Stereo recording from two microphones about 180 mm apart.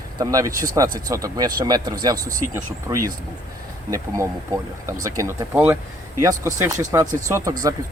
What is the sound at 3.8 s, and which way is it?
Speech, 20° right (ahead or behind).